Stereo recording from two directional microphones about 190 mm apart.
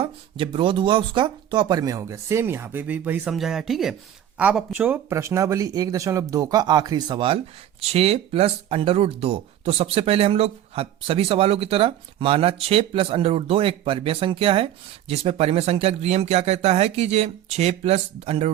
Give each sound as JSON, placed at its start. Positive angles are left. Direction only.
{"t": 0.0, "sound": "speech", "side_deg": -30}